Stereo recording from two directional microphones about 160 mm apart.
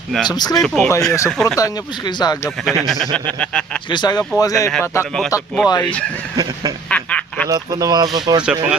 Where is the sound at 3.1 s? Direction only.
5° left (ahead or behind).